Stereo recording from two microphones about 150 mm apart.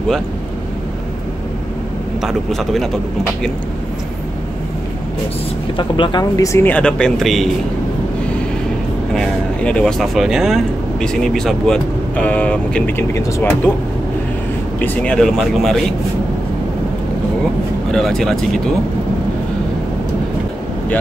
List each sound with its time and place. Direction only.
2.2 s speech: centre (ahead or behind)
5.8 s speech: 30° left (ahead or behind)
6.7 s speech: 5° left (ahead or behind)
9.1 s speech: 5° left (ahead or behind)
14.8 s speech: 10° left (ahead or behind)
17.9 s speech: 5° left (ahead or behind)